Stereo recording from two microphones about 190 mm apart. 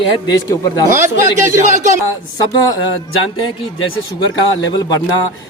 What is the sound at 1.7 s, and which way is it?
Speech, 40° right (ahead or behind).